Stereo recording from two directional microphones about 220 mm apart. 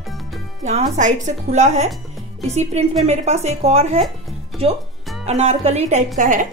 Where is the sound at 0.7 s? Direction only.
35° right (ahead or behind).